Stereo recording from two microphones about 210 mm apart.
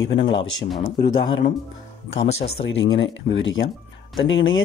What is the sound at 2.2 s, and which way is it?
Speech, 60° left (ahead or behind).